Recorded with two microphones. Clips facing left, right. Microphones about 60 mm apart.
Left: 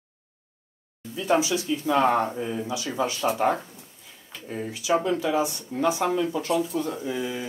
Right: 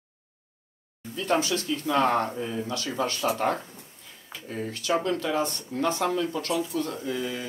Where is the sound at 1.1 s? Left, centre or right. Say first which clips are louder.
Left 2 dB; centre.